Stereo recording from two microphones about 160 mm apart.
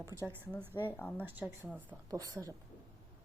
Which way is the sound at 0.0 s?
20° right (ahead or behind).